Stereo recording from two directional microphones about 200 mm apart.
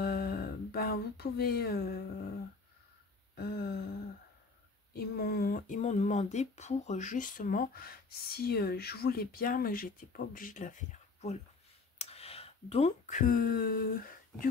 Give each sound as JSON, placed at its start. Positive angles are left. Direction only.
{"t": 0.0, "sound": "a sound", "side_deg": 50}
{"t": 3.3, "sound": "speech", "side_deg": 55}
{"t": 4.9, "sound": "speech", "side_deg": 50}